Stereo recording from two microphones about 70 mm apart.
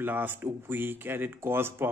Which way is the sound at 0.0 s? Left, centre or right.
Right.